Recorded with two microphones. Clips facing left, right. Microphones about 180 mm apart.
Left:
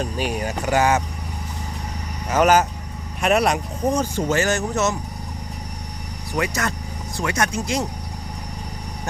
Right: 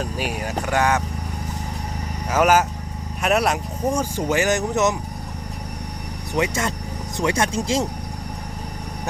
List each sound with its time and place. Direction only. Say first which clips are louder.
0.0 s speech: left 2 dB; 5° right (ahead or behind)
2.3 s speech: left 1 dB; 5° right (ahead or behind)
6.3 s speech: right 1 dB; 25° right (ahead or behind)